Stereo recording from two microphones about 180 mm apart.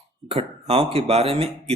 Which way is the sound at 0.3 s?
35° right (ahead or behind).